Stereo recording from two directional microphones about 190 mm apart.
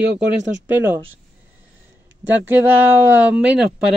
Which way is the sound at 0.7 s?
10° right (ahead or behind).